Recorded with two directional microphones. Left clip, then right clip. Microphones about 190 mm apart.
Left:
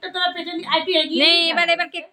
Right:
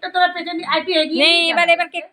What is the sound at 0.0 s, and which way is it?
A woman's voice, 30° right (ahead or behind).